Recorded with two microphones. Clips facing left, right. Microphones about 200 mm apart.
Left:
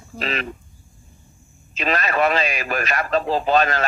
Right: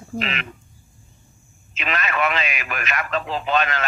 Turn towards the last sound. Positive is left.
turn(degrees=35)  # may be behind; listen again after turning